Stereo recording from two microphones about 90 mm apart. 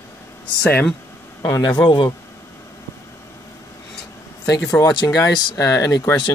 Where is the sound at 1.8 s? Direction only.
60° left (ahead or behind).